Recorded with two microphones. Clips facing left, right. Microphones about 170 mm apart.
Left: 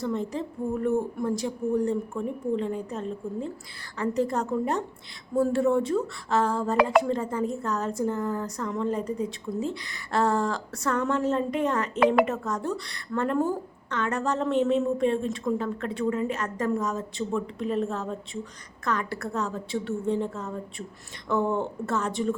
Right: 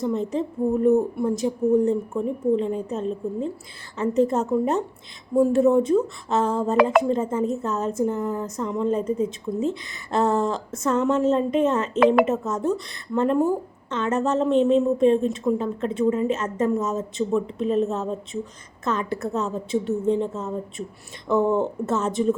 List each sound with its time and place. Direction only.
0.0 s speech: 20° right (ahead or behind)